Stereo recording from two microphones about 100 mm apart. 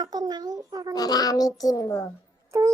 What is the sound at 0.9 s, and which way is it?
A child's voice, 40° left (ahead or behind).